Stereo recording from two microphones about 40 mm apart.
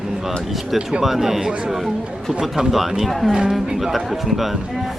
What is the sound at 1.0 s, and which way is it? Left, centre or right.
Speech, centre.